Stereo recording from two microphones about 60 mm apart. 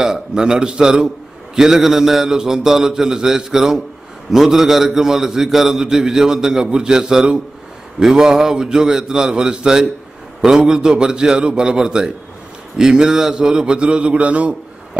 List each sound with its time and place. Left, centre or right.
0.0 s a man's voice: centre